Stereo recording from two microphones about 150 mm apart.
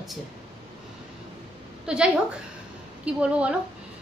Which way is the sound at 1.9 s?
5° right (ahead or behind).